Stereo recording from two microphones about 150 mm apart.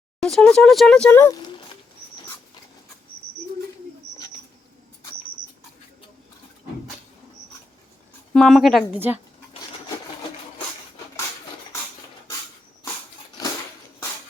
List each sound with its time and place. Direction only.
0.2 s speech: 5° left (ahead or behind)
1.4 s a sound: 30° left (ahead or behind)
8.3 s speech: centre (ahead or behind)